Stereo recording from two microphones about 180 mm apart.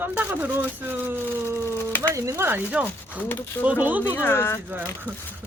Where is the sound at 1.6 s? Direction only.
10° left (ahead or behind).